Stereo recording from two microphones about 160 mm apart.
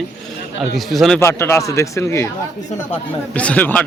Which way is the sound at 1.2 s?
15° left (ahead or behind).